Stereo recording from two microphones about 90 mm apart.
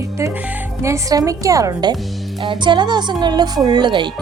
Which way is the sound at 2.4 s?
60° right (ahead or behind).